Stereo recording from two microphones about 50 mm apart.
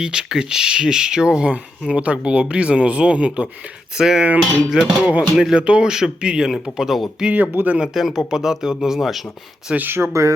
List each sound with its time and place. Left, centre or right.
0.0 s speech: centre
3.9 s speech: centre
7.2 s speech: right
7.5 s speech: right
7.9 s speech: centre
9.9 s speech: right